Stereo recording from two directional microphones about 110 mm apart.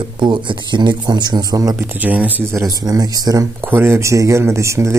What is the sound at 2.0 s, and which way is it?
Speech, 15° right (ahead or behind).